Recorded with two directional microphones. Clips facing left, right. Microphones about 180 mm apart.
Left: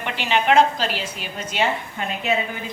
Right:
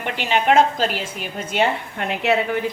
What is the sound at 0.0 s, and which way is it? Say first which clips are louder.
A woman's voice: right 1 dB; 45° right (ahead or behind).